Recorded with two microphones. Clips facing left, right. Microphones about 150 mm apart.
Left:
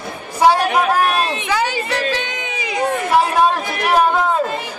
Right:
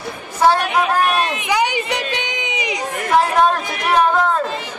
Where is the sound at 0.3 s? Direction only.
15° left (ahead or behind).